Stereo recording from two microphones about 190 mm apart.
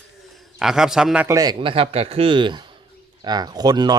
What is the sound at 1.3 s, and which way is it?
Speech, 20° right (ahead or behind).